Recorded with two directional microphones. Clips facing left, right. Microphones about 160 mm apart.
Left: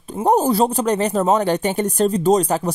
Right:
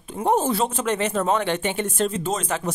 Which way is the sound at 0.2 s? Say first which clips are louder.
Left 5 dB; 40° left (ahead or behind).